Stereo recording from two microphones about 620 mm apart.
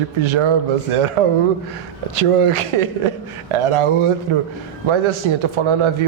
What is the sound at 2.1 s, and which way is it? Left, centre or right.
Speech, right.